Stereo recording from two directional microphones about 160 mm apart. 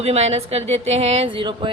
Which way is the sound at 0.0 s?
40° right (ahead or behind).